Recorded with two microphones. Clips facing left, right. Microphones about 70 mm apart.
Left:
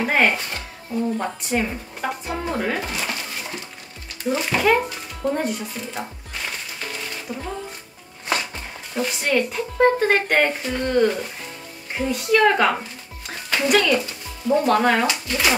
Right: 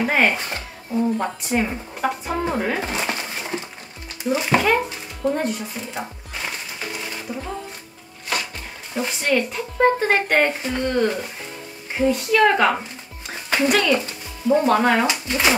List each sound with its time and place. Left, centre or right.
0.0 s speech: centre
0.4 s speech: centre
1.1 s speech: centre
2.8 s dog: right
4.2 s speech: centre
5.8 s music: centre
8.9 s speech: centre
13.3 s music: centre
14.5 s speech: centre
14.8 s speech: centre
15.0 s speech: right